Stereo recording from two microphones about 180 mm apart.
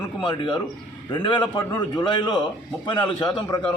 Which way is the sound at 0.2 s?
25° left (ahead or behind).